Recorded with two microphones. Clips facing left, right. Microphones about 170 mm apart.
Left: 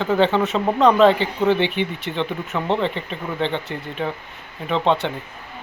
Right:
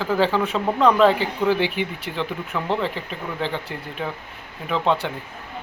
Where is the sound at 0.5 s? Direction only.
25° left (ahead or behind).